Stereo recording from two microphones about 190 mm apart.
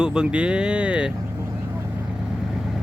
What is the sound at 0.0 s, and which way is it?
Speech, 5° right (ahead or behind).